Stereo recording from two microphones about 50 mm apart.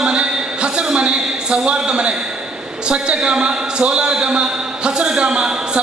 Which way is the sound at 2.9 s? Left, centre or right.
Centre.